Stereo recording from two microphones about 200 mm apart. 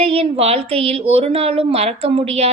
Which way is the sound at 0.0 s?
30° right (ahead or behind).